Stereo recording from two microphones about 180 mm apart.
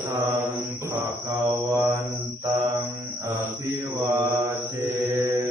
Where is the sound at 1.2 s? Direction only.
25° right (ahead or behind).